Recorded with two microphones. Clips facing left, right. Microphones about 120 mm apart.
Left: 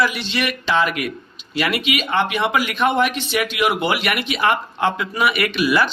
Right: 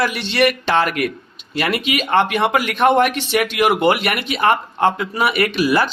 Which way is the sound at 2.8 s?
65° right (ahead or behind).